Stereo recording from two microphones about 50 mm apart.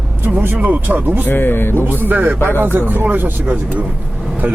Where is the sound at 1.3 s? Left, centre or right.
Left.